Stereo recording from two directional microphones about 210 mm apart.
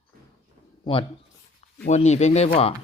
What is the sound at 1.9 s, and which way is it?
Speech, 35° left (ahead or behind).